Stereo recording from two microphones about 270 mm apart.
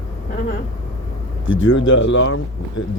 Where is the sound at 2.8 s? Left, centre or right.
Left.